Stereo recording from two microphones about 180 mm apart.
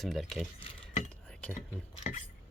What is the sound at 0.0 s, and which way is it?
Speech, centre (ahead or behind).